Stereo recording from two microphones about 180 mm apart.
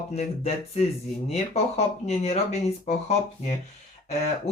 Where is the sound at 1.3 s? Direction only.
35° left (ahead or behind).